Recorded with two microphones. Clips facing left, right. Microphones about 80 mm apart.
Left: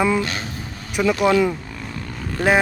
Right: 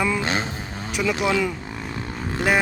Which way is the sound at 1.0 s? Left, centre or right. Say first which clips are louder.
Left 5 dB; centre.